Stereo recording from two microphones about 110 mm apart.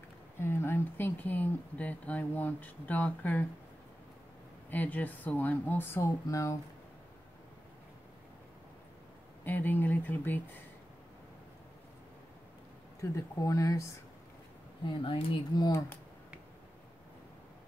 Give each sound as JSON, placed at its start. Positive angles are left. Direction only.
{"t": 0.4, "sound": "speech", "side_deg": 20}
{"t": 4.6, "sound": "speech", "side_deg": 15}
{"t": 9.4, "sound": "speech", "side_deg": 15}
{"t": 13.0, "sound": "speech", "side_deg": 30}
{"t": 15.0, "sound": "speech", "side_deg": 50}